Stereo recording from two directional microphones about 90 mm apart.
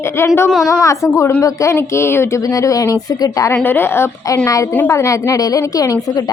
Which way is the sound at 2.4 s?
40° left (ahead or behind).